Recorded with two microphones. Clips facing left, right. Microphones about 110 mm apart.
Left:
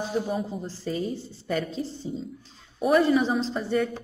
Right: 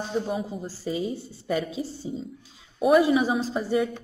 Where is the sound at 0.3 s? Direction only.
5° right (ahead or behind).